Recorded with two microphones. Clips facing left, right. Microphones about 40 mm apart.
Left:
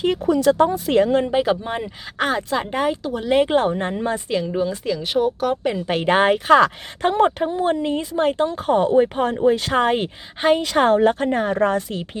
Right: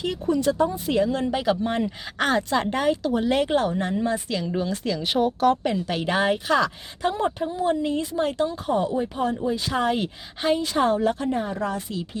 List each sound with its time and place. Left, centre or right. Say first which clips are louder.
0.3 s speech: left 5 dB; left
1.1 s speech: left 5 dB; left
1.6 s speech: right 2 dB; centre
3.5 s speech: left 3 dB; left
4.8 s speech: left 3 dB; centre
5.9 s speech: left 7 dB; left
7.5 s speech: left 3 dB; left
7.8 s speech: left 3 dB; left
10.6 s speech: left 5 dB; left